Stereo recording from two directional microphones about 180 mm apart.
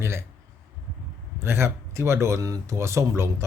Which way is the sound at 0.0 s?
15° right (ahead or behind).